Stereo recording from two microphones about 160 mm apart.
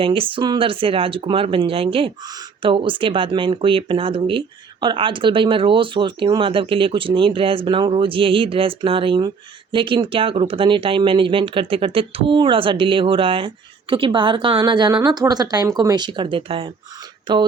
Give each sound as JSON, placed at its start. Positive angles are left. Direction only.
{"t": 0.0, "sound": "speech", "side_deg": -35}